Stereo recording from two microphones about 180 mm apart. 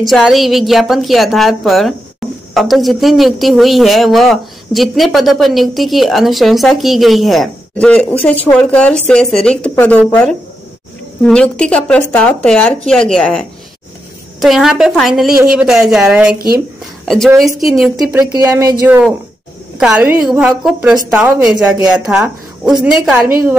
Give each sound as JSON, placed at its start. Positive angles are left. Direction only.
{"t": 0.0, "sound": "a man's voice", "side_deg": 0}
{"t": 18.3, "sound": "a man's voice", "side_deg": -15}